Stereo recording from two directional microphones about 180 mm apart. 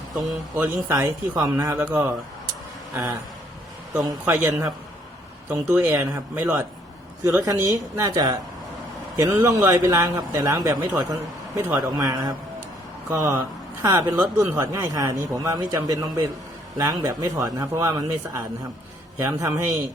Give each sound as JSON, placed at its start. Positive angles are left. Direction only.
{"t": 0.3, "sound": "a man's voice", "side_deg": -10}
{"t": 1.8, "sound": "a man's voice", "side_deg": -10}
{"t": 4.3, "sound": "a man's voice", "side_deg": -15}
{"t": 7.4, "sound": "a man's voice", "side_deg": -20}
{"t": 19.2, "sound": "a man's voice", "side_deg": -15}